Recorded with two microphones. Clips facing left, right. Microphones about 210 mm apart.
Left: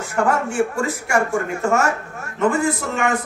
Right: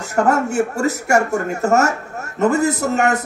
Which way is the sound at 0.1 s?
40° right (ahead or behind).